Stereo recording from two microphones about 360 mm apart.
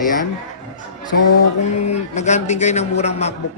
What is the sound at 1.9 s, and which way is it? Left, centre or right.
A man's voice, centre.